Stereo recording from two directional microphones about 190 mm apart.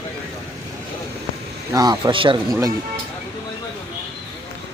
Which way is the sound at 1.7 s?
20° right (ahead or behind).